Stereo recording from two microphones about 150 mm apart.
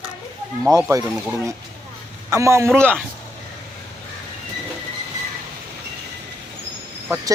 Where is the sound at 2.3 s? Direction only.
20° right (ahead or behind).